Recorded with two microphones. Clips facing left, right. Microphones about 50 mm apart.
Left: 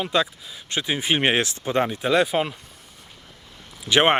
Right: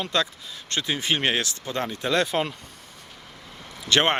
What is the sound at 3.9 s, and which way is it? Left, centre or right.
Speech, centre.